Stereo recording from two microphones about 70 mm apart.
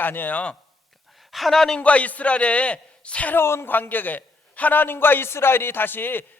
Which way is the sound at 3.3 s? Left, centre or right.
Left.